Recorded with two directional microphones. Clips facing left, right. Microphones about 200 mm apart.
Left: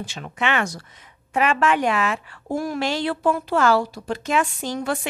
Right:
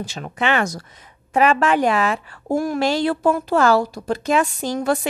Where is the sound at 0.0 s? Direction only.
40° right (ahead or behind).